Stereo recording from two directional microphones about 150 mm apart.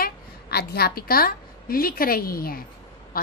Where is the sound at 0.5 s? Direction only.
90° left.